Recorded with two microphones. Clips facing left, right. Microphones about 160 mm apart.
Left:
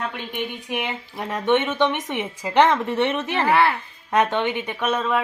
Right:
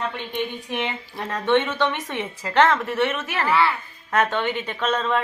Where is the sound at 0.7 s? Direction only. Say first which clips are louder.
Even; 10° left (ahead or behind).